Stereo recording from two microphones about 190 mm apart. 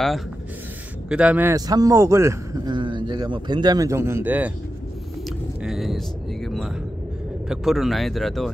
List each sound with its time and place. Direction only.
1.0 s a man's voice: 5° right (ahead or behind)
5.6 s a sound: centre (ahead or behind)
7.4 s speech: centre (ahead or behind)